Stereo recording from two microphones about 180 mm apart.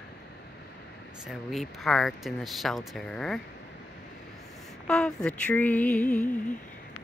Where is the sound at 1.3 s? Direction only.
Centre (ahead or behind).